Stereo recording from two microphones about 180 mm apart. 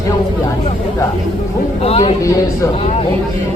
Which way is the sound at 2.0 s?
15° left (ahead or behind).